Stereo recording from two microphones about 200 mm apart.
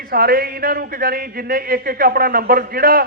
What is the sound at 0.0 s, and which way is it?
A man's voice, 50° right (ahead or behind).